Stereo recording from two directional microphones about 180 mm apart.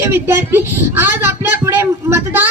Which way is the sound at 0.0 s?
10° right (ahead or behind).